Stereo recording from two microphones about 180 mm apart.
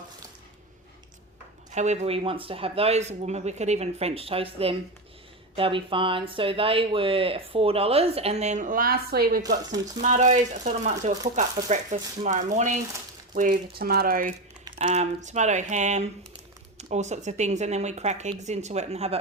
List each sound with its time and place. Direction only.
1.7 s speech: 40° right (ahead or behind); by 9.4 s 60° right (ahead or behind)
10.0 s speech: 45° right (ahead or behind)
14.8 s speech: 40° right (ahead or behind)